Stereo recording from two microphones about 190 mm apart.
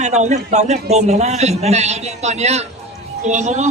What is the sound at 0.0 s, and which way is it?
A man's voice, 35° right (ahead or behind).